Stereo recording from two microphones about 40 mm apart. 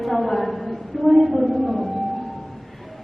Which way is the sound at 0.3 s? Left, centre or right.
Centre.